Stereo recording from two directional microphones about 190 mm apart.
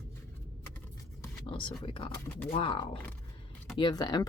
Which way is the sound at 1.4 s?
25° left (ahead or behind).